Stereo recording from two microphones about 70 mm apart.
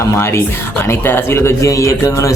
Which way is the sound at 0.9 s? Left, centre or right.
Left.